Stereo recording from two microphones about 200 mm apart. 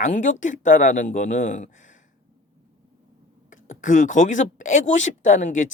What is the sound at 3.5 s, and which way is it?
Speech, 40° left (ahead or behind).